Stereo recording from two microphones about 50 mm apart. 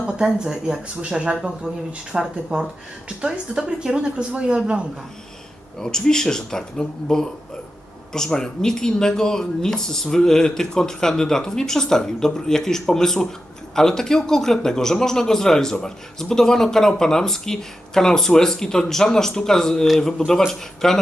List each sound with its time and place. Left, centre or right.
0.2 s speech: centre
1.4 s speech: centre
2.1 s a woman's voice: right
5.8 s a man's voice: centre